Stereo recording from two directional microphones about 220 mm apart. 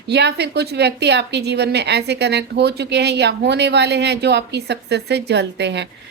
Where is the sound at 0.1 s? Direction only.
50° right (ahead or behind).